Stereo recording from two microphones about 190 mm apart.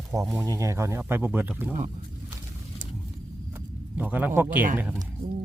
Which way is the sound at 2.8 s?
45° right (ahead or behind).